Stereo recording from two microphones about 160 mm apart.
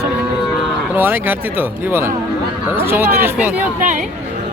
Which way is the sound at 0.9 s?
15° right (ahead or behind).